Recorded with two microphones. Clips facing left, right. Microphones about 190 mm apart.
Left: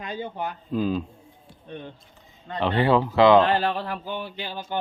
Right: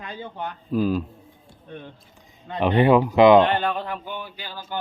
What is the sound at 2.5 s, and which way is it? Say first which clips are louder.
Speech: right 4 dB; 15° right (ahead or behind).